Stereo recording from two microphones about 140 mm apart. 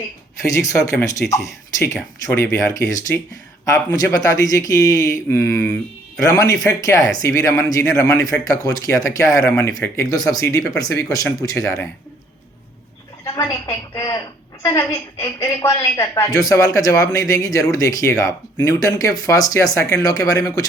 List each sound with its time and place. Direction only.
0.5 s speech: 25° left (ahead or behind)
13.2 s speech: 25° left (ahead or behind)